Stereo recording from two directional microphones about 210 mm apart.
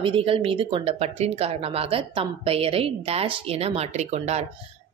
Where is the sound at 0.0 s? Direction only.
25° right (ahead or behind).